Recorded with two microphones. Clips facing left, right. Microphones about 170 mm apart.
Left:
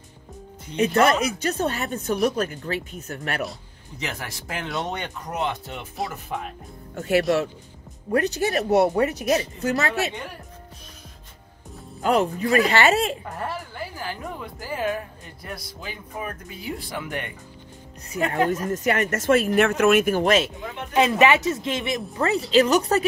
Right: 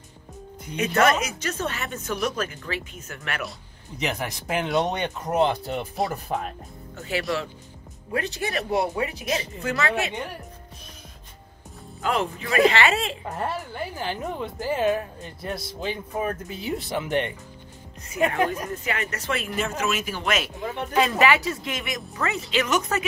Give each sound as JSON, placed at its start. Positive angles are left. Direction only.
{"t": 0.7, "sound": "speech", "side_deg": 30}
{"t": 4.0, "sound": "speech", "side_deg": -20}
{"t": 7.0, "sound": "speech", "side_deg": 50}
{"t": 12.0, "sound": "speech", "side_deg": 40}
{"t": 13.9, "sound": "speech", "side_deg": -25}
{"t": 18.7, "sound": "speech", "side_deg": 50}
{"t": 19.5, "sound": "speech", "side_deg": 65}
{"t": 20.2, "sound": "speech", "side_deg": 25}